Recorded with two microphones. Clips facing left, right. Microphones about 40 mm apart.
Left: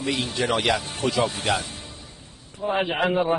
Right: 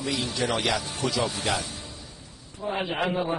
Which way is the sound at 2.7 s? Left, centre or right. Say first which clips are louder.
Left 4 dB; left.